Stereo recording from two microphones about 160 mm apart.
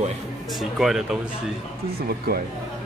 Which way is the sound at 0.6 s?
Centre (ahead or behind).